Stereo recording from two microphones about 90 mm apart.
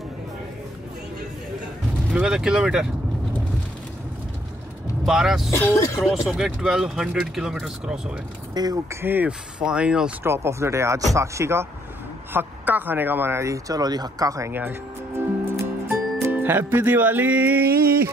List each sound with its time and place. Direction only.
2.1 s speech: 10° right (ahead or behind)
5.0 s speech: 5° right (ahead or behind)
5.5 s speech: 25° left (ahead or behind)
6.2 s speech: 5° right (ahead or behind)
8.6 s speech: 50° right (ahead or behind)
9.0 s speech: 20° right (ahead or behind)
9.6 s speech: 10° right (ahead or behind)
10.2 s speech: 30° right (ahead or behind)
12.3 s speech: 20° right (ahead or behind); by 14.5 s 40° right (ahead or behind)
14.5 s music: 25° right (ahead or behind)